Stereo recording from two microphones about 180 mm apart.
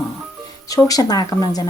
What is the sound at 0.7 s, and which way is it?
Speech, 20° left (ahead or behind).